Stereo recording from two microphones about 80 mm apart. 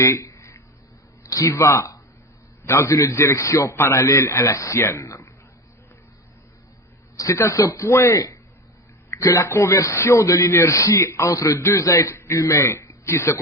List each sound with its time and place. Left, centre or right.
0.0 s a sound: left
1.2 s a man's voice: left
7.2 s a man's voice: left